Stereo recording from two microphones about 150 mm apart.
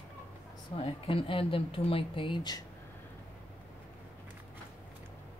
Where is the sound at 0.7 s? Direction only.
35° left (ahead or behind).